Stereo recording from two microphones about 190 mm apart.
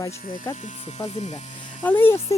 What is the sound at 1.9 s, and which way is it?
Speech, 10° left (ahead or behind).